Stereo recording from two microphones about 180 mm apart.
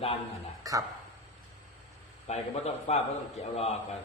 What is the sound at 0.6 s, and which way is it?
Speech, 20° right (ahead or behind).